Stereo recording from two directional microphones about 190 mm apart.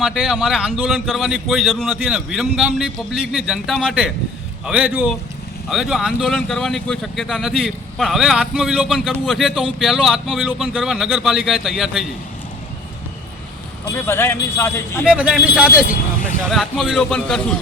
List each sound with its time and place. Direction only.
0.0 s a man's voice: centre (ahead or behind)
13.8 s speech: 15° left (ahead or behind)
15.0 s a man's voice: 5° right (ahead or behind)
15.9 s speech: 45° left (ahead or behind)
16.5 s a man's voice: centre (ahead or behind)